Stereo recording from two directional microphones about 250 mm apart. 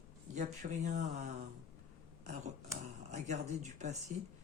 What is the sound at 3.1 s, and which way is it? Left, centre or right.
Speech, right.